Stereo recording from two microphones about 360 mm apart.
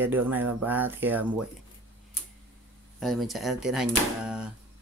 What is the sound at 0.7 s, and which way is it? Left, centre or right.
Speech, centre.